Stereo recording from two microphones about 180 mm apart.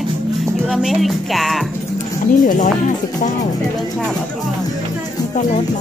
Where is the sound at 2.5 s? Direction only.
45° left (ahead or behind).